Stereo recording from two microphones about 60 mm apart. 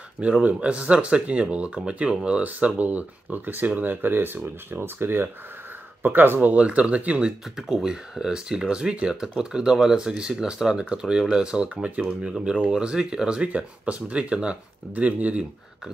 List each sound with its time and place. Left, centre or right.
0.2 s speech: right
7.5 s speech: centre; by 15.4 s right